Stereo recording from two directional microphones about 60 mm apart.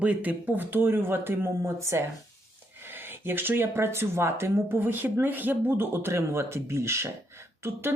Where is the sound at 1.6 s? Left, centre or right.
Right.